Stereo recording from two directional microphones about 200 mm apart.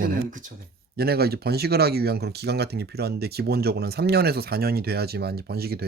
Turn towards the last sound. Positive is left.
turn(degrees=-50)  # may be behind; listen again after turning